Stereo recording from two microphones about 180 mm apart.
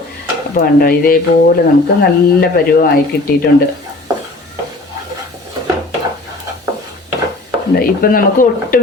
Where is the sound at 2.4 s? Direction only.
55° left (ahead or behind).